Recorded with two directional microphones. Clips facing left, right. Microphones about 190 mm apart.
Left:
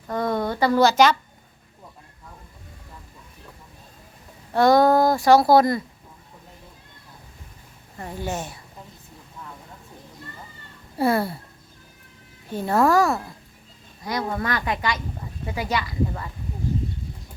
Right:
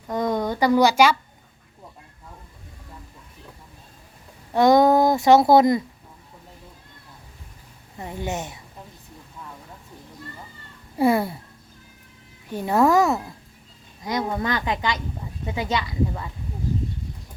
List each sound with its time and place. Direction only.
0.1 s a sound: 15° right (ahead or behind)
4.5 s speech: 20° right (ahead or behind)
7.9 s speech: 15° right (ahead or behind)
10.9 s speech: 15° right (ahead or behind)
12.5 s speech: 15° right (ahead or behind)